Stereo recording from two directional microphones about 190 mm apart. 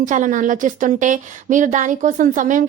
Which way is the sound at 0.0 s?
40° right (ahead or behind).